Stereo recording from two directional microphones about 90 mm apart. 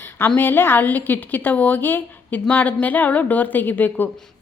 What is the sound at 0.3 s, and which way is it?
A woman's voice, 25° left (ahead or behind).